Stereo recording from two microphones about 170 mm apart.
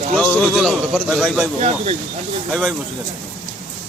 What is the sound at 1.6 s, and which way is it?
Speech, 40° right (ahead or behind).